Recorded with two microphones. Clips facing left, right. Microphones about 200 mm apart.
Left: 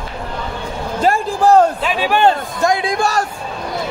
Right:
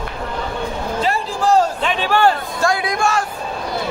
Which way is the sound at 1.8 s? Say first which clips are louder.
Left 2 dB; 5° left (ahead or behind).